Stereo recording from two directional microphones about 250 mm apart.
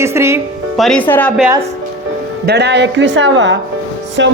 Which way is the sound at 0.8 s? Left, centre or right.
Centre.